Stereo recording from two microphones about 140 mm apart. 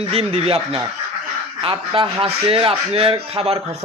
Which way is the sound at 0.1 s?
45° right (ahead or behind).